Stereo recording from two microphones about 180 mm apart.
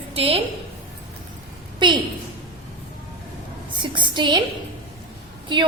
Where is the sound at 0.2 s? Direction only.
30° right (ahead or behind).